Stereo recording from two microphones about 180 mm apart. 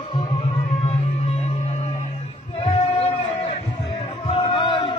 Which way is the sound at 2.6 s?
30° left (ahead or behind).